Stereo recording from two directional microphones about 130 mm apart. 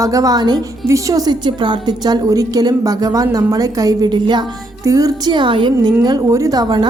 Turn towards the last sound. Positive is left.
turn(degrees=-30)  # may be behind; listen again after turning